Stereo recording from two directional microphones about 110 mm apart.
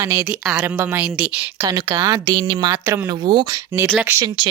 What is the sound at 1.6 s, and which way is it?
A woman's voice, 35° right (ahead or behind).